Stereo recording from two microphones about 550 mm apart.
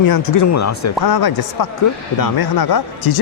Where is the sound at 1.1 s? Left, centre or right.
Left.